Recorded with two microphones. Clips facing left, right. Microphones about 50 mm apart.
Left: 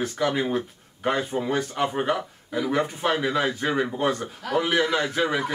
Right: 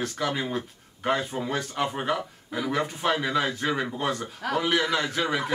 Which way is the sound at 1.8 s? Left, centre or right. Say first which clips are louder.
Left 1 dB; centre.